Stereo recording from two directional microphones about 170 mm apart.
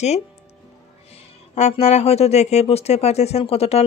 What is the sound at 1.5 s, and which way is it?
Speech, 40° left (ahead or behind).